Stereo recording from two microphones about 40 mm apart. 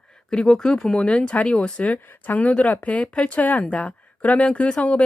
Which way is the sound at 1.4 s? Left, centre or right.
Left.